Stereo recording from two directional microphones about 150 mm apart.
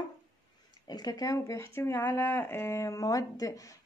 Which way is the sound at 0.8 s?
25° left (ahead or behind).